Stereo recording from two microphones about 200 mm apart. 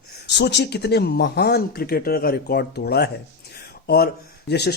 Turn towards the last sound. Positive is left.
turn(degrees=55)  # may be behind; listen again after turning